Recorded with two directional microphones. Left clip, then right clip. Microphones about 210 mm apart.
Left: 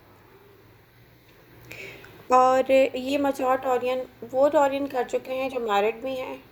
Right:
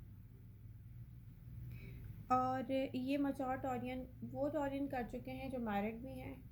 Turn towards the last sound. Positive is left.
turn(degrees=15)  # may be behind; listen again after turning